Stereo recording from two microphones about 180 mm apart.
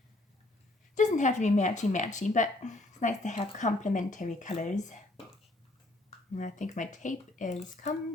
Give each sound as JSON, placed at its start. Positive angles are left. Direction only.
{"t": 0.9, "sound": "speech", "side_deg": 45}
{"t": 6.3, "sound": "speech", "side_deg": 45}